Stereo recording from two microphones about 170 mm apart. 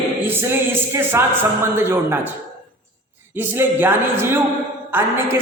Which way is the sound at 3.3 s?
15° right (ahead or behind).